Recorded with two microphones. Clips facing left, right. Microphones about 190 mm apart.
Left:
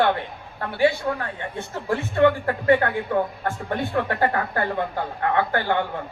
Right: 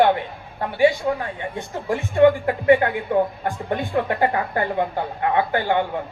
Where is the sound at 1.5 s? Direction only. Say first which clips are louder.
Even; 15° right (ahead or behind).